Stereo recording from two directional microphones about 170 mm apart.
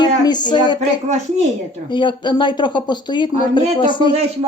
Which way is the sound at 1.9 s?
25° left (ahead or behind).